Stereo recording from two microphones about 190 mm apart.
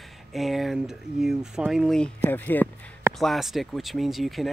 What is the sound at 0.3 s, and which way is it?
Speech, centre (ahead or behind).